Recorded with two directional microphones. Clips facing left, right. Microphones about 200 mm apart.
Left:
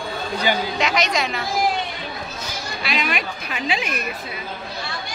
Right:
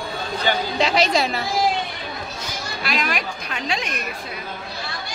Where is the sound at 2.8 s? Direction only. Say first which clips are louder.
Even; centre (ahead or behind).